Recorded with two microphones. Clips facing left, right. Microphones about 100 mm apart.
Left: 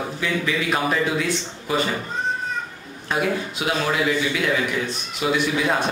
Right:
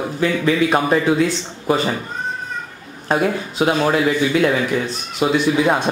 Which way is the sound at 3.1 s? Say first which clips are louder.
Right 4 dB; 35° right (ahead or behind).